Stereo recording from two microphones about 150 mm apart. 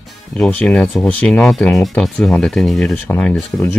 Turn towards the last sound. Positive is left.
turn(degrees=15)  # may be behind; listen again after turning